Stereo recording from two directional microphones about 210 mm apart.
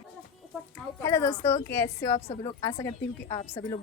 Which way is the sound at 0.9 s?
15° left (ahead or behind).